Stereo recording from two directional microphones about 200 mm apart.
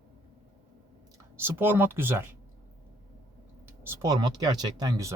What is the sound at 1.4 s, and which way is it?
Speech, 10° right (ahead or behind).